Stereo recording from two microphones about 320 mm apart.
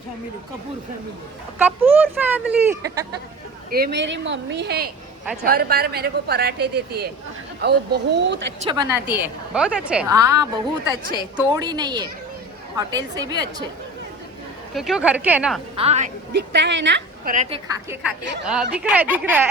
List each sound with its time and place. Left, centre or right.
1.5 s speech: centre
3.7 s a woman's voice: right
8.6 s a woman's voice: centre
14.7 s speech: centre
15.7 s a woman's voice: centre
17.7 s speech: centre